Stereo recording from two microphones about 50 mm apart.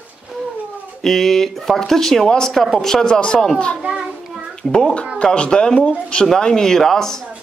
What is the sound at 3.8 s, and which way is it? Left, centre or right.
Child singing, centre.